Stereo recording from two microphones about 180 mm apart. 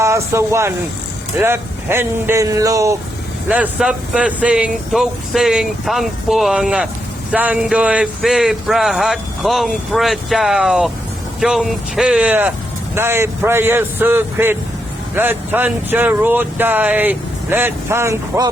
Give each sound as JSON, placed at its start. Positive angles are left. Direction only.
{"t": 0.0, "sound": "speech", "side_deg": -15}
{"t": 3.5, "sound": "speech", "side_deg": -5}